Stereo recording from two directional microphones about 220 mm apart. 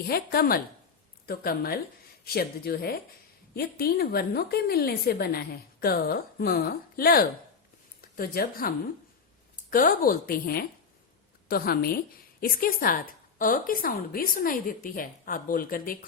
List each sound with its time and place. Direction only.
0.1 s a woman's voice: 40° left (ahead or behind)